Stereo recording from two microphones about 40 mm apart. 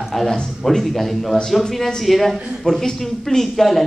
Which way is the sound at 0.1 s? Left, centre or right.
Centre.